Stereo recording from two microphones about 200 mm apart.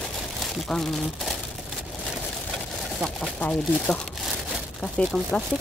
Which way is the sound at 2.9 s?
5° left (ahead or behind).